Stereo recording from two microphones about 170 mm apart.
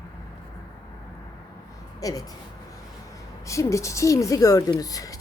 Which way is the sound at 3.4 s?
20° left (ahead or behind).